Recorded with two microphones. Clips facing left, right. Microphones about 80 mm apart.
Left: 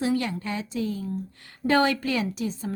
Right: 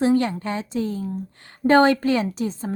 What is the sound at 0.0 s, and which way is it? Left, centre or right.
A woman's voice, right.